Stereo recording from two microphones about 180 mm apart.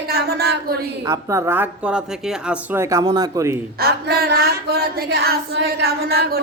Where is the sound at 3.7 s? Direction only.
60° right (ahead or behind).